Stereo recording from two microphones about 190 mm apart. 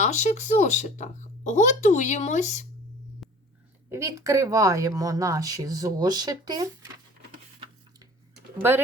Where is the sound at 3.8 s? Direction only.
15° right (ahead or behind).